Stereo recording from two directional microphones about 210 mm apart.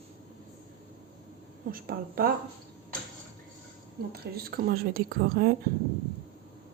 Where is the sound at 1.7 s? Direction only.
45° right (ahead or behind).